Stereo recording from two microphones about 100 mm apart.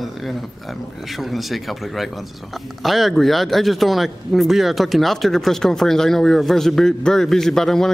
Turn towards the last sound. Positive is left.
turn(degrees=5)  # may be behind; listen again after turning